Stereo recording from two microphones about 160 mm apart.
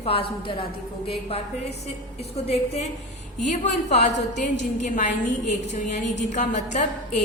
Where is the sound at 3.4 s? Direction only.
45° left (ahead or behind).